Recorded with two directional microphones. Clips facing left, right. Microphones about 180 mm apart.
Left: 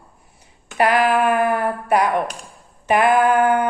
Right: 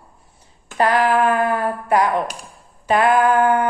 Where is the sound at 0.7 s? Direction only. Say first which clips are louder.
Even; 15° left (ahead or behind).